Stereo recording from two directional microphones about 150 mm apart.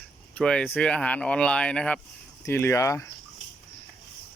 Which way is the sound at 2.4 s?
15° left (ahead or behind).